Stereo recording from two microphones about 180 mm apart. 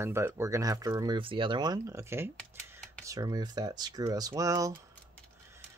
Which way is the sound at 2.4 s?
5° left (ahead or behind).